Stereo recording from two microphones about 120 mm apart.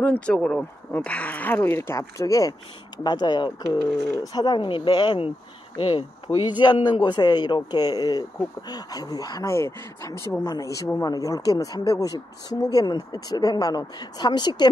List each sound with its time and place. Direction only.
0.0 s speech: 10° left (ahead or behind); by 14.7 s 35° left (ahead or behind)